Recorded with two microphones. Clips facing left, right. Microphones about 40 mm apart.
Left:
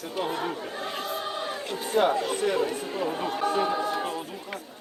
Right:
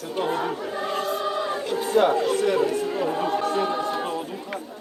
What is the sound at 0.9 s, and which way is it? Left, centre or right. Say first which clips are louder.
Choir: right 6 dB; right.